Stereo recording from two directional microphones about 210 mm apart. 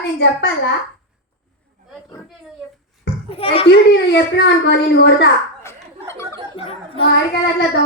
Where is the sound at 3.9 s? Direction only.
55° left (ahead or behind).